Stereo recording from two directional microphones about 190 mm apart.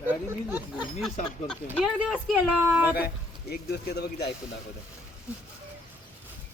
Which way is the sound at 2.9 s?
55° left (ahead or behind).